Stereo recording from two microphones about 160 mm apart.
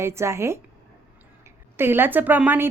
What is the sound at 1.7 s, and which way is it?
Speech, 15° right (ahead or behind).